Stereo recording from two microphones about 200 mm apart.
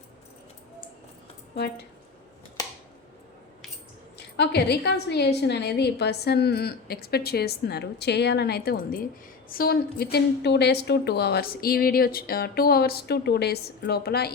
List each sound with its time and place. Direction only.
4.4 s a woman's voice: 55° left (ahead or behind)